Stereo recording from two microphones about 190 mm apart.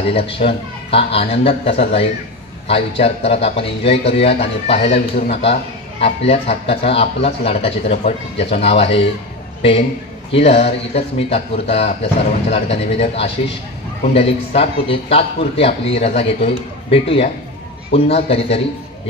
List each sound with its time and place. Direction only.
0.1 s a man's voice: 30° left (ahead or behind)